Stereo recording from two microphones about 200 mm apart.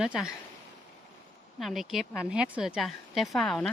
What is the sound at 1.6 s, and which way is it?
Speech, centre (ahead or behind).